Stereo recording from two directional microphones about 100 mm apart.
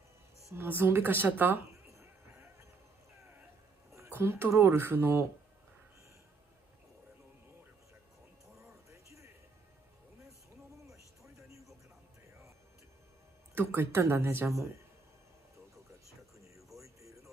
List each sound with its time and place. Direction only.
0.5 s a woman's voice: 20° right (ahead or behind)
1.7 s a sound: 30° right (ahead or behind)
3.9 s speech: 25° right (ahead or behind)
8.9 s music: 30° right (ahead or behind)
10.9 s music: 30° right (ahead or behind)
13.7 s a woman's voice: 25° right (ahead or behind)
16.8 s a sound: 30° right (ahead or behind)